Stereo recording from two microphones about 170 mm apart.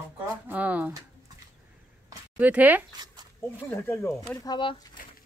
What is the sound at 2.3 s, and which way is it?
Speech, 10° right (ahead or behind).